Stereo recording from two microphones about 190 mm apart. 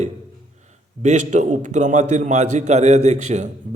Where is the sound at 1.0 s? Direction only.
40° right (ahead or behind).